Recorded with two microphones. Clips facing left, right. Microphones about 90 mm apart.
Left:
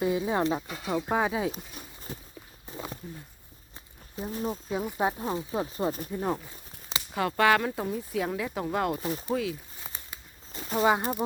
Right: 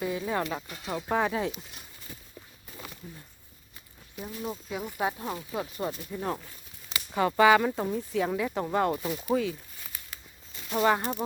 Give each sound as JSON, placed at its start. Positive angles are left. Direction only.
{"t": 0.0, "sound": "speech", "side_deg": 20}
{"t": 1.2, "sound": "speech", "side_deg": 10}
{"t": 2.6, "sound": "walk", "side_deg": 30}
{"t": 4.1, "sound": "speech", "side_deg": 35}
{"t": 4.8, "sound": "speech", "side_deg": 20}
{"t": 6.1, "sound": "speech", "side_deg": 20}
{"t": 7.1, "sound": "speech", "side_deg": 0}
{"t": 9.0, "sound": "speech", "side_deg": 30}
{"t": 9.3, "sound": "speech", "side_deg": 0}
{"t": 9.8, "sound": "a sound", "side_deg": 25}
{"t": 10.8, "sound": "speech", "side_deg": 10}